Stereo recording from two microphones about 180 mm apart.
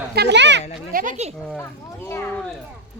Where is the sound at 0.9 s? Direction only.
45° right (ahead or behind).